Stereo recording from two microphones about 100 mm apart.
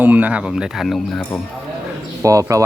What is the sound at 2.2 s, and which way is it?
Speech, 30° right (ahead or behind).